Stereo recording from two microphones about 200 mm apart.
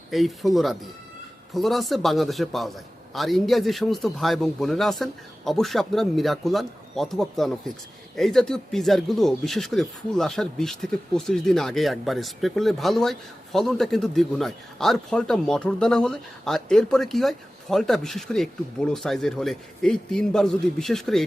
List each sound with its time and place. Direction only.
0.1 s speech: centre (ahead or behind)